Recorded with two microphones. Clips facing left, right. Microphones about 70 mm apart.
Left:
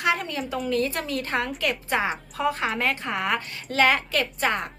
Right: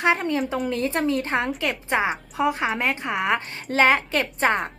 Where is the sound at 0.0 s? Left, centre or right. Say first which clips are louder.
Right 4 dB; right.